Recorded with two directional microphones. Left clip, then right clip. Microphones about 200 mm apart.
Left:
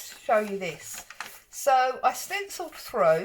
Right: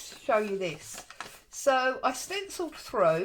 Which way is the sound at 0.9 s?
5° right (ahead or behind).